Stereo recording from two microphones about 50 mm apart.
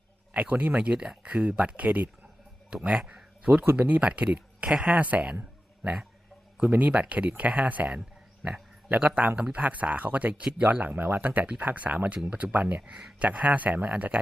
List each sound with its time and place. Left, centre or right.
0.3 s speech: right
3.1 s a sound: right
3.8 s speech: right
5.8 s speech: centre
6.6 s speech: right
11.2 s speech: right